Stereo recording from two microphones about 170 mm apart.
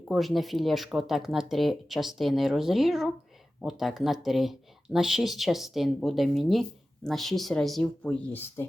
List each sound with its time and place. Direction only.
0.1 s speech: centre (ahead or behind)